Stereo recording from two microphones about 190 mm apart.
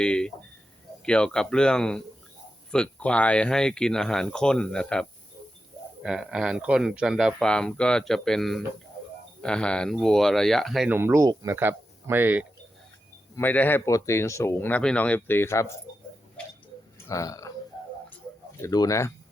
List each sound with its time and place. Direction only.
0.0 s speech: 5° left (ahead or behind)
10.9 s speech: 10° right (ahead or behind)
13.3 s speech: 10° left (ahead or behind)
17.1 s speech: 15° left (ahead or behind)
18.6 s speech: 20° left (ahead or behind)